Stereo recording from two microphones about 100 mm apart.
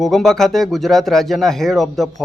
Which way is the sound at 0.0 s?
Centre (ahead or behind).